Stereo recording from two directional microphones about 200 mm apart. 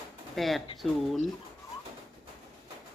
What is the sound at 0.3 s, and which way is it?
Speech, centre (ahead or behind).